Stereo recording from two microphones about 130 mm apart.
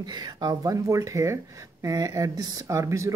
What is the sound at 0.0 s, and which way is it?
Speech, 35° right (ahead or behind).